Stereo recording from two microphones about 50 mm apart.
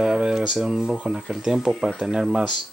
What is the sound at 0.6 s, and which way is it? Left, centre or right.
Speech, centre.